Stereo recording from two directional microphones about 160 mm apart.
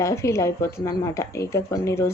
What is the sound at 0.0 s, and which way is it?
Speech, 20° left (ahead or behind).